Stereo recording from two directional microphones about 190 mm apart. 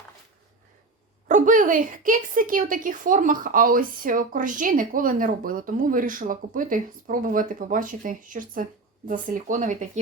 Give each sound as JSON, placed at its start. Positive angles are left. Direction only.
{"t": 1.3, "sound": "a woman's voice", "side_deg": -45}